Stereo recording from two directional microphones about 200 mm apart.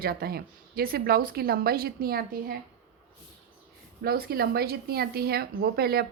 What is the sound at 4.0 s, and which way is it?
A woman's voice, 50° right (ahead or behind).